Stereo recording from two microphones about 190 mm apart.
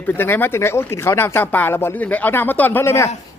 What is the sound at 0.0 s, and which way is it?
Speech, 10° left (ahead or behind).